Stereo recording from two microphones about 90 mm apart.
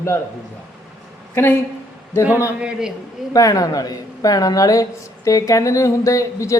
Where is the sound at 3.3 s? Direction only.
40° left (ahead or behind).